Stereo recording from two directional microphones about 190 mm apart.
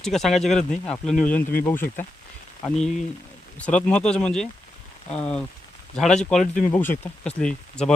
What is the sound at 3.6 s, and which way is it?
Speech, 5° left (ahead or behind).